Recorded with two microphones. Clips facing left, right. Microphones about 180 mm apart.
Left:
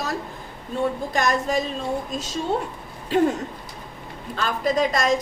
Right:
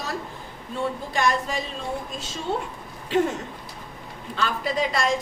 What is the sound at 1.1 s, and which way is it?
Speech, 45° left (ahead or behind).